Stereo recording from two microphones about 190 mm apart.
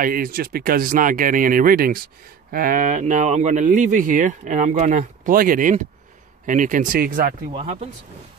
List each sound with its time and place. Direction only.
0.0 s speech: 50° right (ahead or behind)
7.5 s speech: 35° right (ahead or behind)